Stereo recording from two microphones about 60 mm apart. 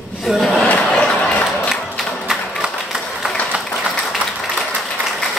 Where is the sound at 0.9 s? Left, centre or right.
Centre.